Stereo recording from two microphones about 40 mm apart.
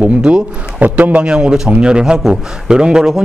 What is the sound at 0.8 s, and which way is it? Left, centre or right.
Speech, right.